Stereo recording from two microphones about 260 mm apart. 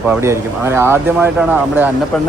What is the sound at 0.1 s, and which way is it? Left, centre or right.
Speech, centre.